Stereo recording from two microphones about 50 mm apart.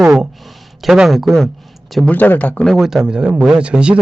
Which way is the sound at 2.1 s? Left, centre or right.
Left.